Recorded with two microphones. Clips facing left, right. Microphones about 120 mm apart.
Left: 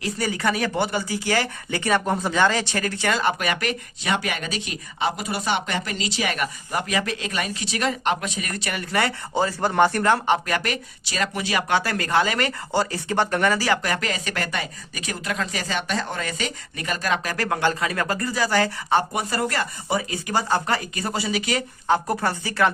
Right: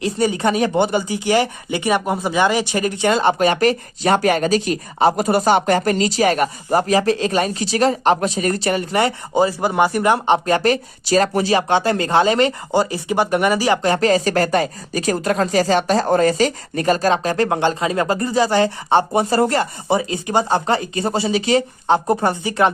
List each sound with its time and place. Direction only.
0.0 s speech: 25° right (ahead or behind)